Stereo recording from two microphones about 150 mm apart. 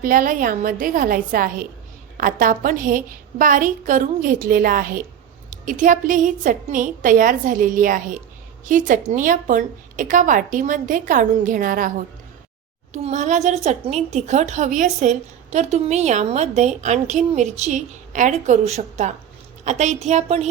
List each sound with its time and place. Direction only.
0.0 s a woman's voice: 65° right (ahead or behind)
5.5 s a woman's voice: 60° right (ahead or behind)
12.9 s a woman's voice: 50° right (ahead or behind)